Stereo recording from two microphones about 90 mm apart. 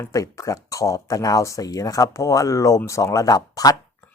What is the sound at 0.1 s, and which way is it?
Speech, 40° left (ahead or behind).